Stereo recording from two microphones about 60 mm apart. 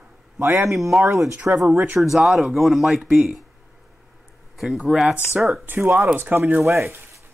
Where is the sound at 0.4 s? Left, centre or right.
Right.